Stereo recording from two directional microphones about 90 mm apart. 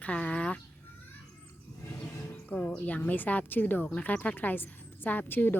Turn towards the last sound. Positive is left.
turn(degrees=20)  # may be behind; listen again after turning